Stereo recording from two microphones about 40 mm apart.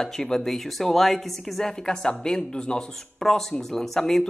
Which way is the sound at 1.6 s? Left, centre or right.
Centre.